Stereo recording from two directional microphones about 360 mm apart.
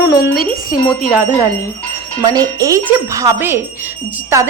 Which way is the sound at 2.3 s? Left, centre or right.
Centre.